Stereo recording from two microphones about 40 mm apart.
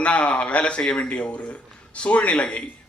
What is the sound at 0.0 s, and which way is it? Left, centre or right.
A man's voice, left.